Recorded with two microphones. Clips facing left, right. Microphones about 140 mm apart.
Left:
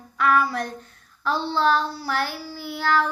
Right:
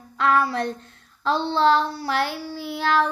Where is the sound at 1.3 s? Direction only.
65° right (ahead or behind).